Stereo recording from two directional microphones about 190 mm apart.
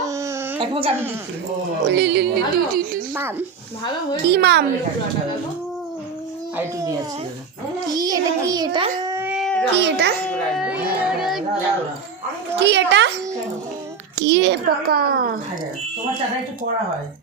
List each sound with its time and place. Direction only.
0.0 s a sound: 15° right (ahead or behind)
0.7 s a woman's voice: 30° right (ahead or behind)
1.9 s speech: 65° right (ahead or behind)
3.2 s a child's voice: 10° right (ahead or behind)
4.2 s speech: 60° right (ahead or behind)
6.6 s a child's voice: 15° right (ahead or behind); by 9.6 s centre (ahead or behind)
9.7 s speech: 65° right (ahead or behind)
10.2 s children playing: 5° left (ahead or behind)
10.6 s a sound: 5° right (ahead or behind)
12.5 s speech: 65° right (ahead or behind)
14.2 s a child's voice: 70° right (ahead or behind); by 15.4 s 50° right (ahead or behind)